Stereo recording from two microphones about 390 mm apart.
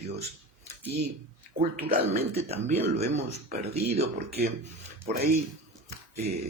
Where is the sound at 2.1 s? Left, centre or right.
Centre.